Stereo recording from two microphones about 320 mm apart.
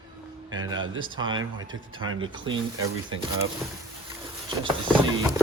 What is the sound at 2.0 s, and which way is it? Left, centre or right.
Speech, right.